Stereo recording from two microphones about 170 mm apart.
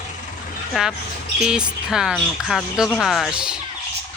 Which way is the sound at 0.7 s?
5° right (ahead or behind).